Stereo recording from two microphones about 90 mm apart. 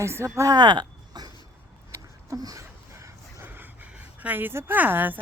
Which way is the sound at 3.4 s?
20° right (ahead or behind).